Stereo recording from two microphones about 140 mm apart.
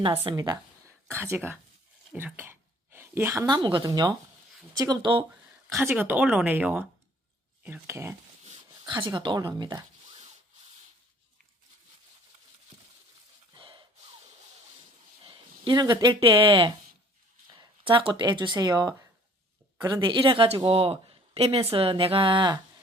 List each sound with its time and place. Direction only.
0.0 s speech: 35° right (ahead or behind)
1.1 s speech: 15° right (ahead or behind)
2.1 s a sound: 15° right (ahead or behind)
3.4 s speech: 30° right (ahead or behind)
5.6 s speech: 20° right (ahead or behind)
8.9 s speech: 35° right (ahead or behind)
13.5 s gasp: 35° right (ahead or behind)
15.3 s speech: 35° right (ahead or behind)